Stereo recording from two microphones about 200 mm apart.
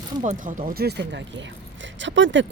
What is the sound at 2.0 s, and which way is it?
Speech, 65° right (ahead or behind).